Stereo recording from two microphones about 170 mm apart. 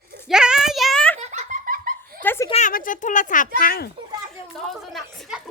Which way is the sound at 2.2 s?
15° left (ahead or behind).